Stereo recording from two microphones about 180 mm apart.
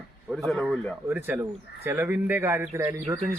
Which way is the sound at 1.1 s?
10° right (ahead or behind).